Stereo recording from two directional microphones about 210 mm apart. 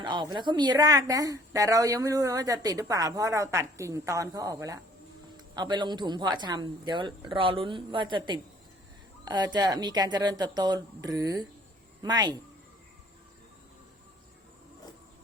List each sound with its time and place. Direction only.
0.0 s a woman's voice: 20° right (ahead or behind)